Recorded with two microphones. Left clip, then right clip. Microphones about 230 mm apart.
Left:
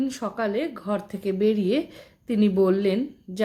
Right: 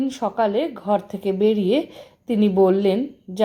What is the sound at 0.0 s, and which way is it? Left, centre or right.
Speech, centre.